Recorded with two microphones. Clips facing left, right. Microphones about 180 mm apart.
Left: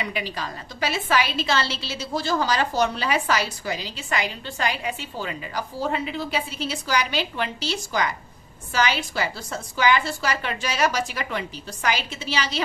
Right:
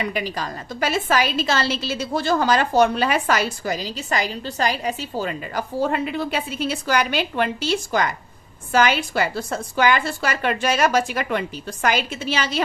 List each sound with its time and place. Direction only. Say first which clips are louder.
0.0 s a woman's voice: right 4 dB; 45° right (ahead or behind)